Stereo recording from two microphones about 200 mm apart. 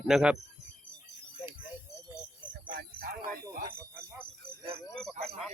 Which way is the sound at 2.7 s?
50° right (ahead or behind).